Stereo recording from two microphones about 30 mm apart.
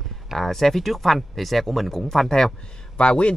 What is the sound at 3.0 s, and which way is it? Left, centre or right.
Speech, left.